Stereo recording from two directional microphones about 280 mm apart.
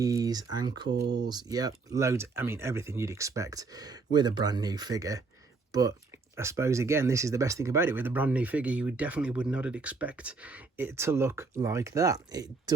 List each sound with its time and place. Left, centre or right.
0.0 s speech: centre
0.9 s speech: right
1.2 s speech: centre